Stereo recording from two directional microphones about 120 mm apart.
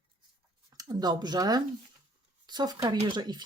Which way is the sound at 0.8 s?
35° right (ahead or behind).